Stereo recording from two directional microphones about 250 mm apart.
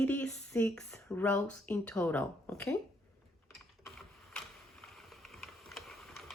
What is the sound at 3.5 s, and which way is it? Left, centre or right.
Mechanisms, centre.